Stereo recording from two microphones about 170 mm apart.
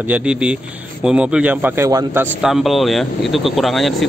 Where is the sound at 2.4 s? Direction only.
Centre (ahead or behind).